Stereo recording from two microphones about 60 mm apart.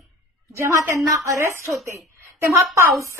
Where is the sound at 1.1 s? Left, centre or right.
Right.